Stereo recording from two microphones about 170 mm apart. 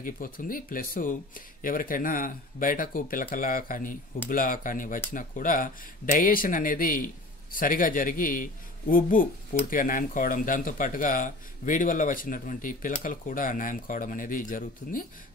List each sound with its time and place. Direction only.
0.0 s speech: 55° left (ahead or behind)